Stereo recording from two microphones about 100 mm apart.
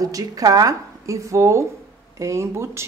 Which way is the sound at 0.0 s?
35° right (ahead or behind).